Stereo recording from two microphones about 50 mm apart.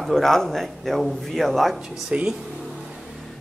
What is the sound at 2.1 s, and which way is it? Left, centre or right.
Speech, right.